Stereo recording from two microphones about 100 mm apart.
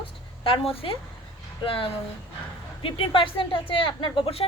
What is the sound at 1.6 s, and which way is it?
Speech, 65° left (ahead or behind).